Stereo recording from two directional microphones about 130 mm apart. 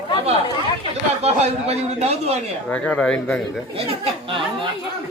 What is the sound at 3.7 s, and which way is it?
Speech, 45° right (ahead or behind).